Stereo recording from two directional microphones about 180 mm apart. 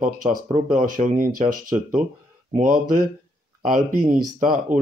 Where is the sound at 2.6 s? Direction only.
50° right (ahead or behind).